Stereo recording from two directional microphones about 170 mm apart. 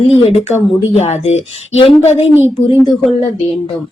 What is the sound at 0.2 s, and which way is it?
A woman's voice, 35° left (ahead or behind).